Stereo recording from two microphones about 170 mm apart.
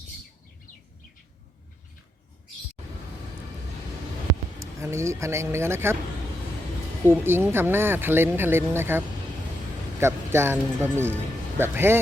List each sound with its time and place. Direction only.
4.8 s speech: 15° right (ahead or behind)
7.0 s speech: 15° right (ahead or behind)